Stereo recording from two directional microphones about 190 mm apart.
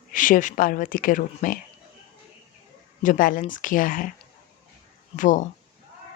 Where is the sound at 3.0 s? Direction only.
45° left (ahead or behind).